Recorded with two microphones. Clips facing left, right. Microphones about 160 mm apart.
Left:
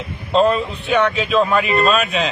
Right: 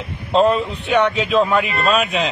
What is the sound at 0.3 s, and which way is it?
A man's voice, 20° right (ahead or behind).